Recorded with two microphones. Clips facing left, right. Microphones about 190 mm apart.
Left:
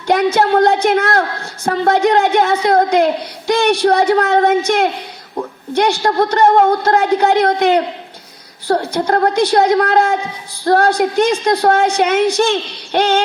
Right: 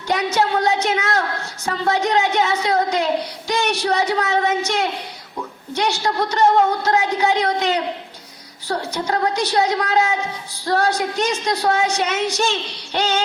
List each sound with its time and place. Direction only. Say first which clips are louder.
0.1 s a woman's voice: left 7 dB; 55° left (ahead or behind)